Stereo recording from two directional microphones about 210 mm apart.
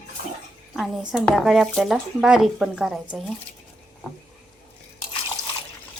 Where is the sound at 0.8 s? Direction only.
Centre (ahead or behind).